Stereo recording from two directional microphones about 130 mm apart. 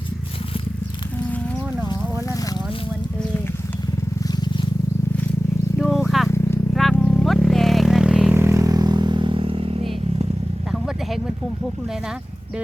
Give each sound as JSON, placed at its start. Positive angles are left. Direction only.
{"t": 4.2, "sound": "vehicle", "side_deg": 30}
{"t": 5.8, "sound": "wild animals", "side_deg": -5}
{"t": 6.7, "sound": "vehicle", "side_deg": 0}
{"t": 8.4, "sound": "vehicle", "side_deg": -20}
{"t": 10.7, "sound": "vehicle", "side_deg": -5}